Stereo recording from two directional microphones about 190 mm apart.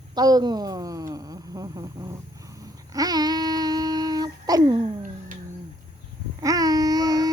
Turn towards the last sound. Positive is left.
turn(degrees=-20)  # may be behind; listen again after turning